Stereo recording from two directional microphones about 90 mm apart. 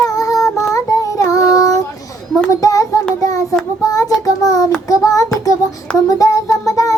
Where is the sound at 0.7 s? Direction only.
40° left (ahead or behind).